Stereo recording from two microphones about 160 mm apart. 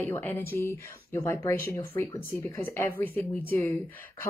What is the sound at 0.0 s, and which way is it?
Speech, 10° left (ahead or behind).